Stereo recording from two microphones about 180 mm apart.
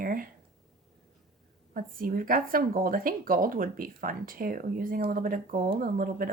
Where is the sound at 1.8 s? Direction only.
50° right (ahead or behind).